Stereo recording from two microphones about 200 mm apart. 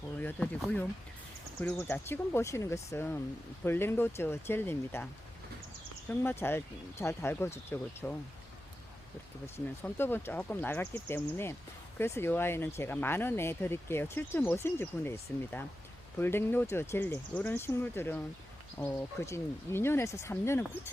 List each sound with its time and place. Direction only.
0.2 s speech: 5° left (ahead or behind)
6.1 s speech: 10° left (ahead or behind)
9.8 s speech: 10° left (ahead or behind)